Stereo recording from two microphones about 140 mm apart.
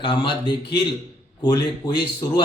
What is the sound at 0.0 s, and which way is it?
Speech, 35° left (ahead or behind).